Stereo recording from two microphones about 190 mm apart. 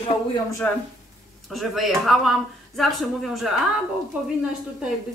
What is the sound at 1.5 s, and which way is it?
A woman's voice, centre (ahead or behind).